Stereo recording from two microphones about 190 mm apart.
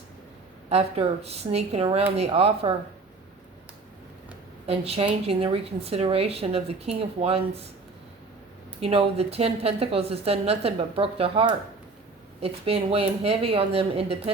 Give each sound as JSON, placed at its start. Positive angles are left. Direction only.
{"t": 0.7, "sound": "speech", "side_deg": -30}
{"t": 4.6, "sound": "speech", "side_deg": -30}
{"t": 8.8, "sound": "speech", "side_deg": -30}